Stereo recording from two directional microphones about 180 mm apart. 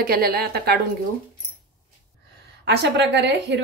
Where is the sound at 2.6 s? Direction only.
70° right (ahead or behind).